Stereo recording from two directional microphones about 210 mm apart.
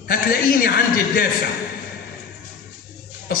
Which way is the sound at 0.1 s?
45° left (ahead or behind).